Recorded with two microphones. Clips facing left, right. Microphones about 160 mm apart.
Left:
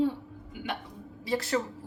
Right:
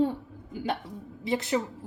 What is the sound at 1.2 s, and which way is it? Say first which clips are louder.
Speech: right 2 dB; 20° right (ahead or behind).